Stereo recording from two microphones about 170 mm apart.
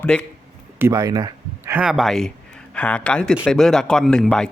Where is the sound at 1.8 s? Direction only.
Centre (ahead or behind).